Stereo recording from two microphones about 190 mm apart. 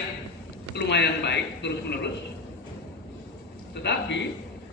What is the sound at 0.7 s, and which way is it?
A man's voice, 65° left (ahead or behind).